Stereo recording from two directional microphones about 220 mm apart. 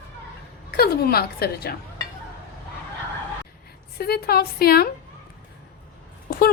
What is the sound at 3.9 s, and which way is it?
Speech, 45° left (ahead or behind).